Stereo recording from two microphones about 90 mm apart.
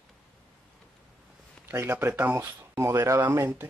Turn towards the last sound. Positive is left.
turn(degrees=-30)  # may be behind; listen again after turning